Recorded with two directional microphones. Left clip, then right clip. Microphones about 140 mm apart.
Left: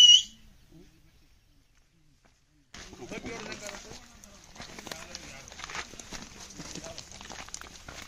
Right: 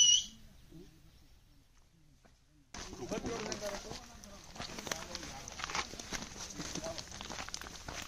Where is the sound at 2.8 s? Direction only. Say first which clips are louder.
Even; 30° right (ahead or behind).